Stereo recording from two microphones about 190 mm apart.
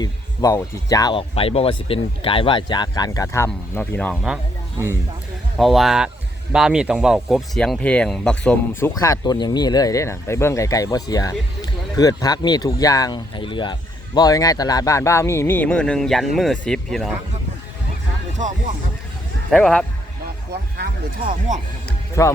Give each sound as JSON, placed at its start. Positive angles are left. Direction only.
{"t": 0.0, "sound": "speech", "side_deg": 20}
{"t": 5.5, "sound": "speech", "side_deg": 0}
{"t": 8.8, "sound": "speech", "side_deg": 15}
{"t": 19.5, "sound": "speech", "side_deg": 5}
{"t": 20.7, "sound": "speech", "side_deg": -50}
{"t": 21.8, "sound": "music", "side_deg": 15}